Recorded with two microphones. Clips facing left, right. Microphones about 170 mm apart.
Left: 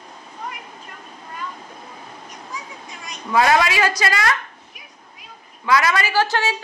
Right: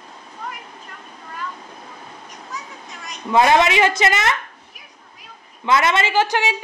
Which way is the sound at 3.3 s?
25° right (ahead or behind).